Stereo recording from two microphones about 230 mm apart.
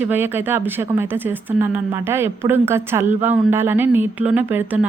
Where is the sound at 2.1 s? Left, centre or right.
Centre.